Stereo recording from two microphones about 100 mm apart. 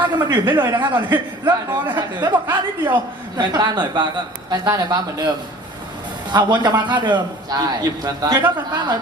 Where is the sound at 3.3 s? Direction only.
45° right (ahead or behind).